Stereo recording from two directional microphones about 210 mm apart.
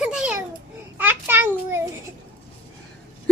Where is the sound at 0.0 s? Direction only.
5° right (ahead or behind).